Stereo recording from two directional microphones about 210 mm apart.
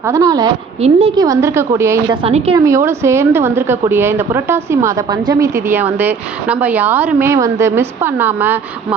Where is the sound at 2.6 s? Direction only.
15° right (ahead or behind).